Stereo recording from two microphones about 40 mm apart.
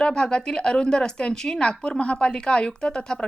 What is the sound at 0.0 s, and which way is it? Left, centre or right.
Speech, centre.